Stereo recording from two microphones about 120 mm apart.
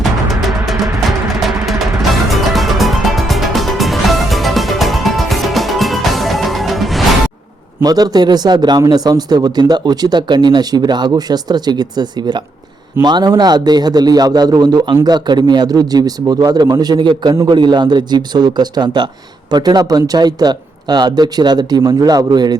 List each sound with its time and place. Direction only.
1.4 s music: centre (ahead or behind)
7.9 s speech: 35° right (ahead or behind)